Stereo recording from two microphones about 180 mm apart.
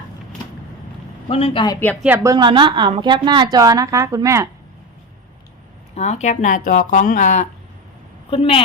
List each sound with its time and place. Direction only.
1.3 s speech: 30° left (ahead or behind)
1.8 s speech: 10° left (ahead or behind)
2.0 s a woman's voice: 15° right (ahead or behind)
5.9 s speech: 40° left (ahead or behind)
8.3 s speech: 30° left (ahead or behind)